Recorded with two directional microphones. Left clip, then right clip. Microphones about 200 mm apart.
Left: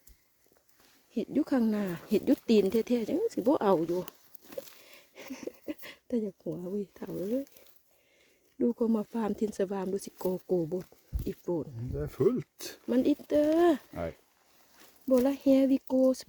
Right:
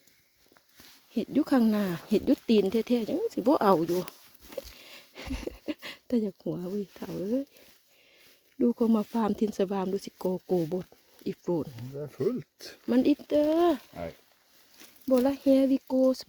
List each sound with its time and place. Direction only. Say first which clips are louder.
1.1 s speech: right 3 dB; 20° right (ahead or behind)
4.8 s a sound: right 5 dB; 20° right (ahead or behind)
6.9 s speech: right 1 dB; 15° right (ahead or behind)
8.5 s speech: right 3 dB; 20° right (ahead or behind)
11.9 s speech: left 2 dB; 55° left (ahead or behind)
12.9 s speech: right 2 dB; 20° right (ahead or behind); by 13.8 s 5° right (ahead or behind)
15.0 s speech: right 1 dB; 10° right (ahead or behind)